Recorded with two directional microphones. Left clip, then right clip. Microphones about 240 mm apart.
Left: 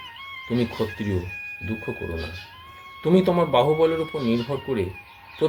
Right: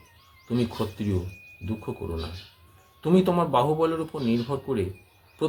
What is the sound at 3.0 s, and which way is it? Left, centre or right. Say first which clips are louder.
Speech: left 3 dB; centre.